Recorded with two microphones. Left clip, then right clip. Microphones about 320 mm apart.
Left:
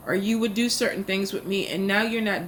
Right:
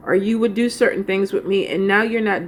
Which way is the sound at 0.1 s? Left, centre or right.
Centre.